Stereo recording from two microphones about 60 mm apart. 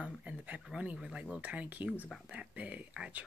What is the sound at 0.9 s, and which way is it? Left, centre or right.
Speech, centre.